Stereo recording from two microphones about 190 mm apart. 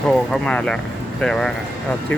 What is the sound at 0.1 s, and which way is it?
Speech, 5° left (ahead or behind).